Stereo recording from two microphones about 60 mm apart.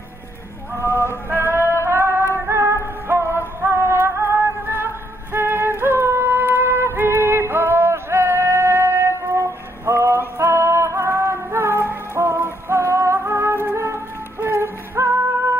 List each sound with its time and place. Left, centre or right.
0.8 s music: left
1.3 s music: right